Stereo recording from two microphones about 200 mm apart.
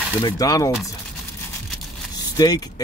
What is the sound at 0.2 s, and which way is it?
Speech, 20° left (ahead or behind).